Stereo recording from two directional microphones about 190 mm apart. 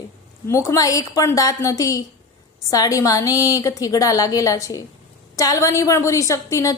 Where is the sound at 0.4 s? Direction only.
15° left (ahead or behind).